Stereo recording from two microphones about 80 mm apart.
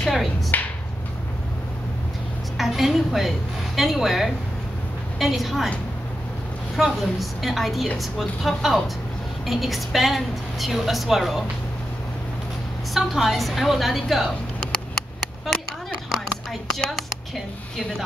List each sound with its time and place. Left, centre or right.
0.0 s speech: centre
0.5 s a sound: left
2.5 s a woman's voice: centre
6.8 s a woman's voice: centre
12.9 s a woman's voice: centre
16.7 s speech: centre